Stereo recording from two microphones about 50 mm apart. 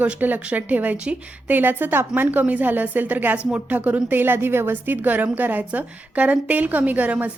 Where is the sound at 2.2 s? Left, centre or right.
Right.